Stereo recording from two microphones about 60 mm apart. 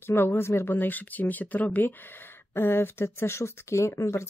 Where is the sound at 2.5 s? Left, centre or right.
Left.